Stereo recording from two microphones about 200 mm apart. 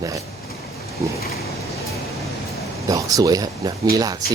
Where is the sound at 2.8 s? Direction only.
20° right (ahead or behind).